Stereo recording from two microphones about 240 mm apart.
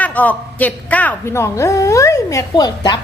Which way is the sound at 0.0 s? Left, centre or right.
Centre.